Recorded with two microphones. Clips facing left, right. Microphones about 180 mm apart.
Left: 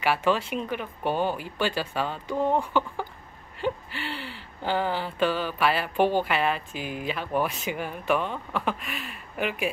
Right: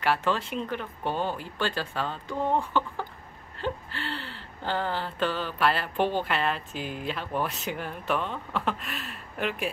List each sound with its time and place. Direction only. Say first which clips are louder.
0.0 s speech: left 2 dB; 10° left (ahead or behind)